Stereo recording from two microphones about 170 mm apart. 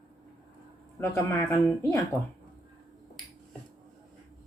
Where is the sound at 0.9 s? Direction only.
15° left (ahead or behind).